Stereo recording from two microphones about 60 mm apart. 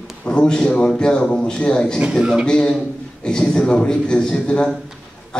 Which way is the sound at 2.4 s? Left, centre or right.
Centre.